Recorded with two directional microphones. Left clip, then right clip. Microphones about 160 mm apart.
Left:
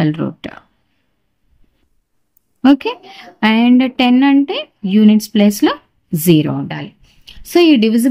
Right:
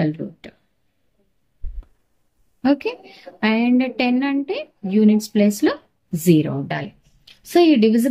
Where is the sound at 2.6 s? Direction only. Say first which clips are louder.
Left 7 dB; 40° left (ahead or behind).